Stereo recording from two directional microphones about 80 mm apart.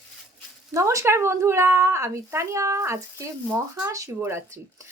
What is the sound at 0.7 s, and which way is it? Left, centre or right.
A woman's voice, right.